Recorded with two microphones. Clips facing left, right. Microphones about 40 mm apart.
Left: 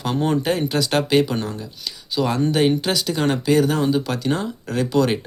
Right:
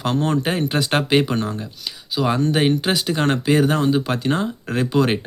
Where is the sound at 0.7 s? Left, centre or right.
Right.